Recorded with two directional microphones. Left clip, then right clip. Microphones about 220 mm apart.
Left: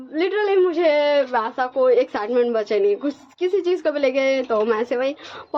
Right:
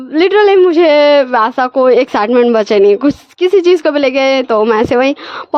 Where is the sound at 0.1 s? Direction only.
50° right (ahead or behind).